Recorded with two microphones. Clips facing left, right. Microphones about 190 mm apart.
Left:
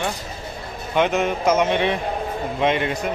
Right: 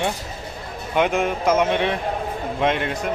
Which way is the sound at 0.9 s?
Centre (ahead or behind).